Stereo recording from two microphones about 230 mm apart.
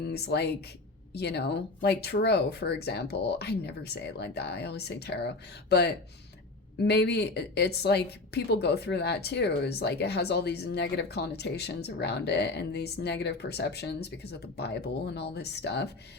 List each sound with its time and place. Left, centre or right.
0.0 s speech: left